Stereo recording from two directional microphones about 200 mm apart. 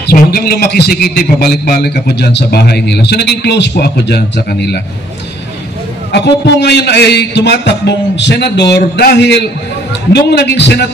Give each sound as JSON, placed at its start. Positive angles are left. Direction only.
{"t": 0.0, "sound": "a man's voice", "side_deg": 50}
{"t": 6.1, "sound": "a man's voice", "side_deg": 55}